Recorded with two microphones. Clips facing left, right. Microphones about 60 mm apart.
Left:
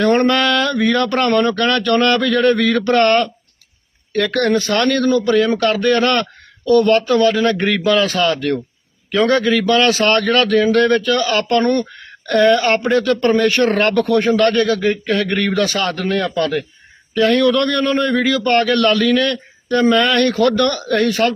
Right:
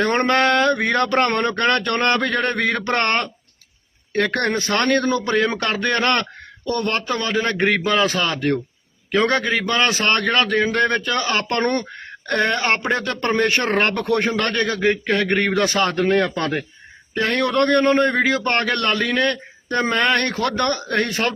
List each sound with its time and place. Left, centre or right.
0.0 s a man's voice: right